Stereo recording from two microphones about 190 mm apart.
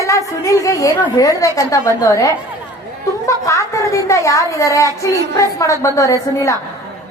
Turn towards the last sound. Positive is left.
turn(degrees=15)  # may be behind; listen again after turning